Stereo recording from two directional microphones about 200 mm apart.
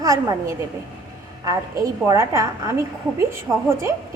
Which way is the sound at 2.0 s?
15° right (ahead or behind).